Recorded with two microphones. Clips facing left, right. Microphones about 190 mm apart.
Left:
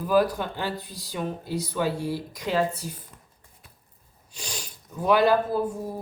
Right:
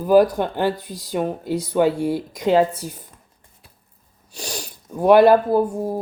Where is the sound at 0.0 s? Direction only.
45° right (ahead or behind).